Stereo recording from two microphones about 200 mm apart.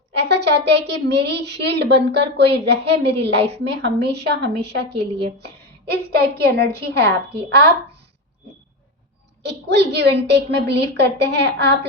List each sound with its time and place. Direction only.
0.2 s a woman's voice: 55° right (ahead or behind)
9.4 s a woman's voice: 55° right (ahead or behind)